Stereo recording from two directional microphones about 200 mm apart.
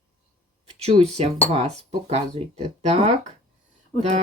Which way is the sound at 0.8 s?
30° right (ahead or behind).